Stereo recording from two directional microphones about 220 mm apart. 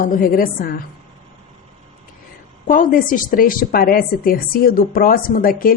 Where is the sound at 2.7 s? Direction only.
40° left (ahead or behind).